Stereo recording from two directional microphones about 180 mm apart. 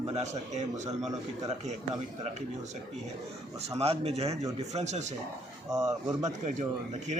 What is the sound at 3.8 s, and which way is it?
A man's voice, 35° right (ahead or behind).